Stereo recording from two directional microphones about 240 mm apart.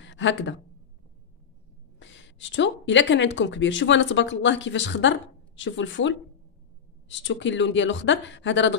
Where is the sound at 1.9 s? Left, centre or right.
Left.